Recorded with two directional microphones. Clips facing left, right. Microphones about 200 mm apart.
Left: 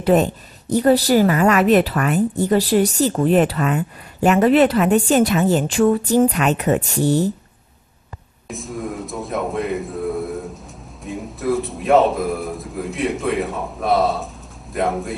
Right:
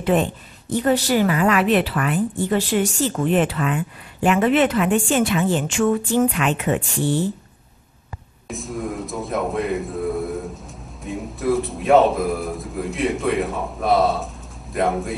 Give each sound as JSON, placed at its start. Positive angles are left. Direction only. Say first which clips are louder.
{"t": 0.0, "sound": "speech", "louder": "left 4 dB", "side_deg": 40}
{"t": 8.5, "sound": "a sound", "louder": "even", "side_deg": 0}
{"t": 11.1, "sound": "a man's voice", "louder": "even", "side_deg": 0}